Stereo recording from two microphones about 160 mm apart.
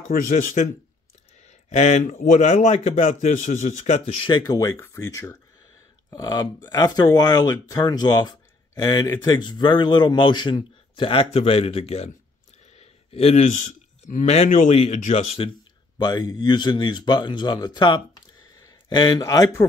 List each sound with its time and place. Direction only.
0.1 s a man's voice: 60° left (ahead or behind)
1.4 s speech: 45° left (ahead or behind)
4.4 s speech: 20° left (ahead or behind); by 12.1 s 40° left (ahead or behind)
12.7 s a sound: 40° left (ahead or behind)
14.1 s speech: 40° left (ahead or behind)
16.0 s speech: 25° left (ahead or behind)